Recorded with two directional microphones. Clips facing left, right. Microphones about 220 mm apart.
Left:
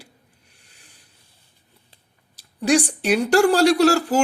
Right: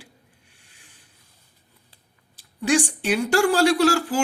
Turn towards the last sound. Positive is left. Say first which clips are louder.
# left 3 dB
turn(degrees=40)  # may be behind; listen again after turning